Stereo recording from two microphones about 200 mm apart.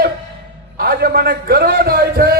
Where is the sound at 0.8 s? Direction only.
50° right (ahead or behind).